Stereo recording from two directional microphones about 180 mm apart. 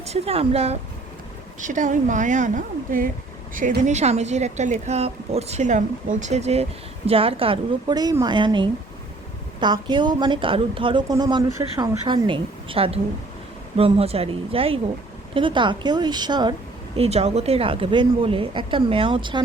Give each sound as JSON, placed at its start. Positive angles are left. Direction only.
{"t": 0.0, "sound": "a woman's voice", "side_deg": -35}
{"t": 9.8, "sound": "speech", "side_deg": -25}
{"t": 17.0, "sound": "speech", "side_deg": -35}